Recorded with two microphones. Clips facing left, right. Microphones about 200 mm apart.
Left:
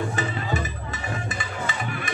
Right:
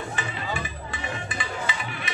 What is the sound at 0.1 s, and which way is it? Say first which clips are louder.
Music: left 4 dB; 40° left (ahead or behind).